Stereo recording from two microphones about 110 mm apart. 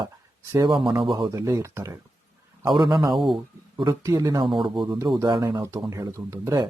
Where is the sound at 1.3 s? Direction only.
25° right (ahead or behind).